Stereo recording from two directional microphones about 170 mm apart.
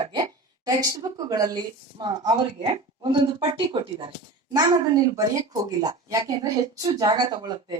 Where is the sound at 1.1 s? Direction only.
20° right (ahead or behind).